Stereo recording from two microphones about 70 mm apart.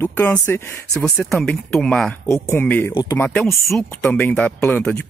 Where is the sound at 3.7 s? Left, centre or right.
Left.